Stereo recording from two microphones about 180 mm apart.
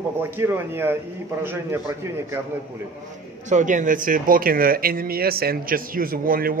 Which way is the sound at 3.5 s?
45° right (ahead or behind).